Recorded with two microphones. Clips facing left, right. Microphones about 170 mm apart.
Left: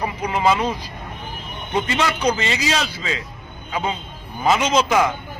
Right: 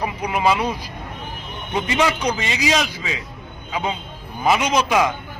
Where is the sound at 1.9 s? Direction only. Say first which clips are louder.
Right 2 dB; 15° right (ahead or behind).